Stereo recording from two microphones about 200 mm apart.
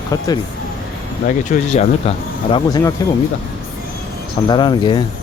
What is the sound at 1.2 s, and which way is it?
Speech, 40° left (ahead or behind).